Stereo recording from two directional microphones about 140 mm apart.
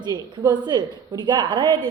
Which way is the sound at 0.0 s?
30° right (ahead or behind).